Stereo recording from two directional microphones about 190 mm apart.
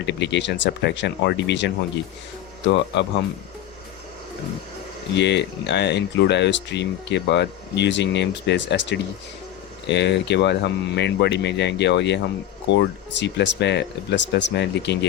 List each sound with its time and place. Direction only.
0.0 s speech: 65° left (ahead or behind)
5.1 s speech: 65° left (ahead or behind)